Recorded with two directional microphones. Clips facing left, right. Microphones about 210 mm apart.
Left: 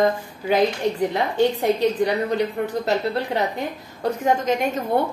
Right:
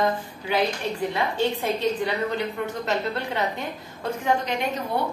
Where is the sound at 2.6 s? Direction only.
35° left (ahead or behind).